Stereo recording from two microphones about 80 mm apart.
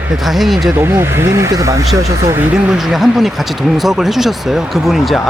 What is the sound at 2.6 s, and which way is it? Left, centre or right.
Speech, centre.